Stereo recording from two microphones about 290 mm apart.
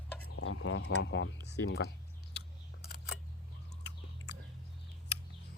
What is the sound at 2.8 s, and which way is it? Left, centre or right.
Camera, left.